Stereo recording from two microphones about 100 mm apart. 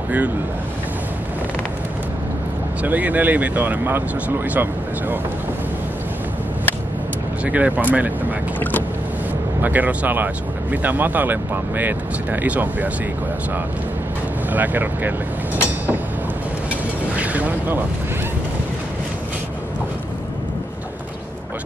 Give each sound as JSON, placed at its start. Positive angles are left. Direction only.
{"t": 2.8, "sound": "speech", "side_deg": -15}
{"t": 7.4, "sound": "speech", "side_deg": -15}
{"t": 9.6, "sound": "speech", "side_deg": -15}
{"t": 14.5, "sound": "speech", "side_deg": -20}
{"t": 17.2, "sound": "speech", "side_deg": -15}